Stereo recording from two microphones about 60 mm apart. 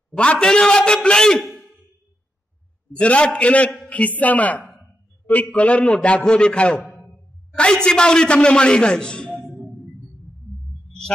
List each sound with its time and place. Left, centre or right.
0.1 s a man's voice: centre
1.4 s a sound: centre
3.0 s a man's voice: centre